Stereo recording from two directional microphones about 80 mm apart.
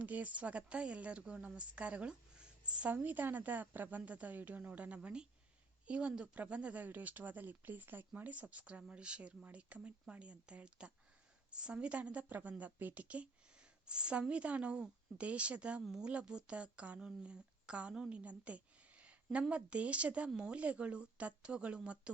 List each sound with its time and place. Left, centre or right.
0.0 s a woman's voice: centre
15.8 s a woman's voice: centre